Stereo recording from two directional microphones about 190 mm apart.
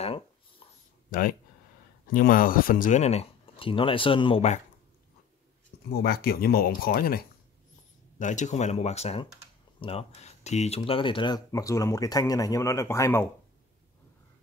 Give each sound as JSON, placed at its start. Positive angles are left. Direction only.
{"t": 0.0, "sound": "writing", "side_deg": 30}
{"t": 2.1, "sound": "speech", "side_deg": 50}
{"t": 5.9, "sound": "speech", "side_deg": 55}
{"t": 8.2, "sound": "speech", "side_deg": 40}